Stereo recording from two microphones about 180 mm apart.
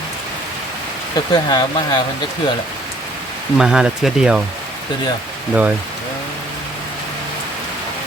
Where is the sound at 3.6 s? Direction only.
5° right (ahead or behind).